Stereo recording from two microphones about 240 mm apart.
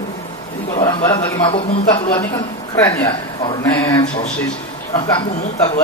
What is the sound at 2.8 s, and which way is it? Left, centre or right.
Speech, centre.